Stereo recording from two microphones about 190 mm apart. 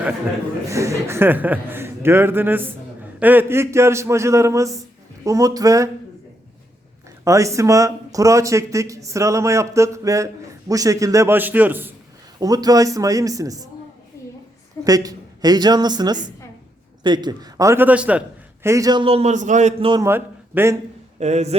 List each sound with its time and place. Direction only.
0.7 s a man's voice: 15° right (ahead or behind)
7.3 s a man's voice: 15° right (ahead or behind)
14.8 s a woman's voice: 20° right (ahead or behind); by 19.9 s 40° right (ahead or behind)
19.9 s a man's voice: 15° right (ahead or behind)
21.2 s a man's voice: 35° right (ahead or behind)